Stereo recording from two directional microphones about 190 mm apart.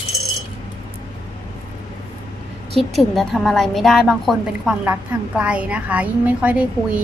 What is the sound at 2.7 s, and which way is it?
A woman's voice, centre (ahead or behind).